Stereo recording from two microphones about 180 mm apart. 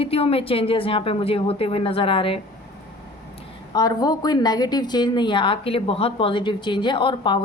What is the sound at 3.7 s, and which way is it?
A woman's voice, 20° left (ahead or behind).